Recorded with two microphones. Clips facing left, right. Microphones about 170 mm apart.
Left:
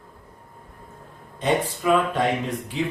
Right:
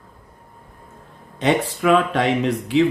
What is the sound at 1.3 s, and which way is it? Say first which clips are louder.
Speech: right 3 dB; 85° right.